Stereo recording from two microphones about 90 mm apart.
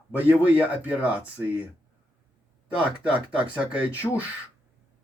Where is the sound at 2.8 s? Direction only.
10° right (ahead or behind).